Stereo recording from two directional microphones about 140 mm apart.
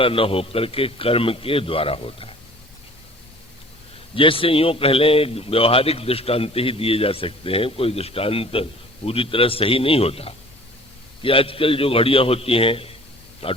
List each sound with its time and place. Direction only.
0.0 s a man's voice: 40° left (ahead or behind)
4.1 s a man's voice: 40° left (ahead or behind)